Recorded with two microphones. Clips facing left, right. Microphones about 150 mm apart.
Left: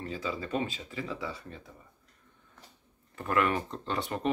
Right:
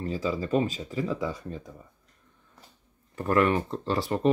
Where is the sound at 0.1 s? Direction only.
40° right (ahead or behind).